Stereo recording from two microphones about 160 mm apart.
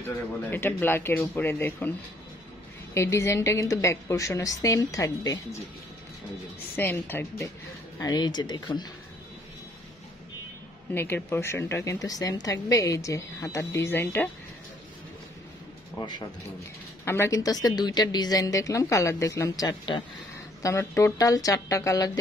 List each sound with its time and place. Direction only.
0.0 s a woman's voice: 15° left (ahead or behind)
6.8 s speech: 15° left (ahead or behind)
8.0 s a woman's voice: 25° left (ahead or behind)
10.9 s a woman's voice: 15° left (ahead or behind)
16.0 s a woman's voice: 25° left (ahead or behind)
17.0 s a woman's voice: 15° left (ahead or behind)